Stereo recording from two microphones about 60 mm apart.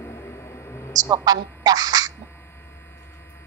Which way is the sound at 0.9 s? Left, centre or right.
Right.